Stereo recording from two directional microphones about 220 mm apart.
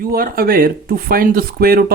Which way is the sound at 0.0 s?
40° right (ahead or behind).